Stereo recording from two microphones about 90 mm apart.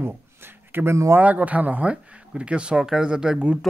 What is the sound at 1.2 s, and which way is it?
Speech, 15° right (ahead or behind).